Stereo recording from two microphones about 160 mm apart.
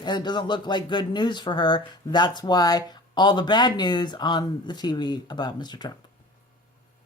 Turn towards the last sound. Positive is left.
turn(degrees=25)  # may be behind; listen again after turning